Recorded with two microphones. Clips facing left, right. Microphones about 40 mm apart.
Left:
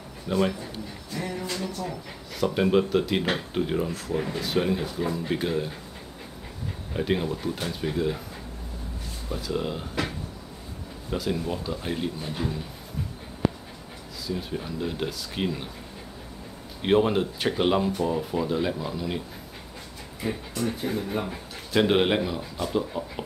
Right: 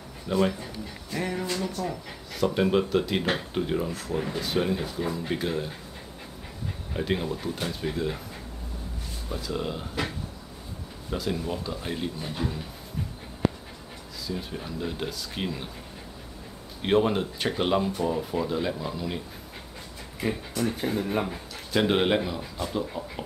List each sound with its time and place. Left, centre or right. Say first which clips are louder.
0.3 s speech: even; centre
1.1 s music: right 2 dB; right
1.8 s speech: right 1 dB; centre
6.9 s speech: left 2 dB; centre
9.3 s speech: left 2 dB; centre
14.2 s speech: left 3 dB; centre
16.8 s speech: left 2 dB; centre
20.5 s speech: even; centre
21.3 s speech: even; centre
23.0 s speech: left 3 dB; left